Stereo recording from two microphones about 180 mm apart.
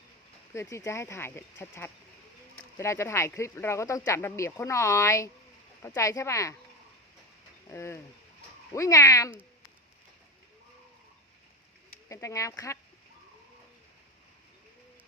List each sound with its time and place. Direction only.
0.5 s speech: 15° left (ahead or behind)
7.7 s speech: 15° left (ahead or behind)
12.0 s speech: 15° left (ahead or behind)